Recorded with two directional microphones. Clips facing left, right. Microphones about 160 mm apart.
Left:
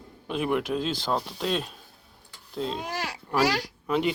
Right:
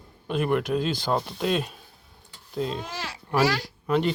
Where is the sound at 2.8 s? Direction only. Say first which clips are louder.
Left 2 dB; 15° left (ahead or behind).